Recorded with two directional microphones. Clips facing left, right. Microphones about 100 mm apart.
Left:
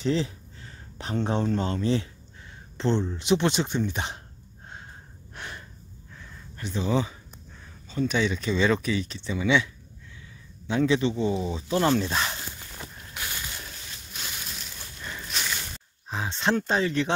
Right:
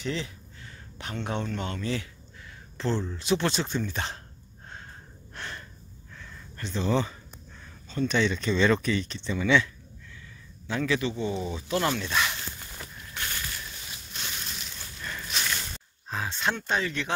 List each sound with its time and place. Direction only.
0.0 s speech: 35° left (ahead or behind); by 4.2 s 15° left (ahead or behind)
5.3 s gasp: 10° left (ahead or behind)
6.1 s a sound: 15° left (ahead or behind)
7.9 s speech: 10° left (ahead or behind)
10.7 s speech: 25° left (ahead or behind)
13.1 s a sound: 10° left (ahead or behind)
16.1 s speech: 25° left (ahead or behind)